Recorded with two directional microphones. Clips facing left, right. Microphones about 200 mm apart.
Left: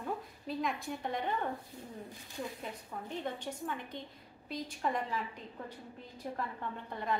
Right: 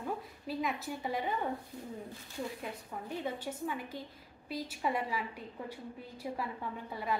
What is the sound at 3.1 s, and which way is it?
A woman's voice, 10° right (ahead or behind).